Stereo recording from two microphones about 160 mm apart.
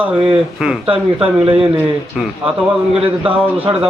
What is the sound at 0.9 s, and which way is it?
Speech, 35° right (ahead or behind).